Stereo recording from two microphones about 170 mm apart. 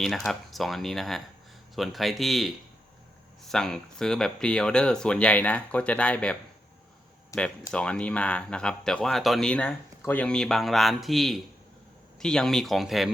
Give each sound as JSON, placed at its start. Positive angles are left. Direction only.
{"t": 0.3, "sound": "speech", "side_deg": 0}
{"t": 3.5, "sound": "speech", "side_deg": 0}
{"t": 7.3, "sound": "speech", "side_deg": 20}
{"t": 7.7, "sound": "speech", "side_deg": 5}